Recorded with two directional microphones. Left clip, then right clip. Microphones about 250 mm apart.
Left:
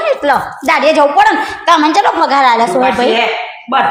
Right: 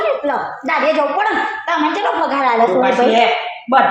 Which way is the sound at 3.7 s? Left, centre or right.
Left.